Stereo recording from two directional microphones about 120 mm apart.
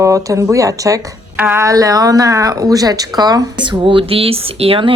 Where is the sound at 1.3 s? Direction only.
20° right (ahead or behind).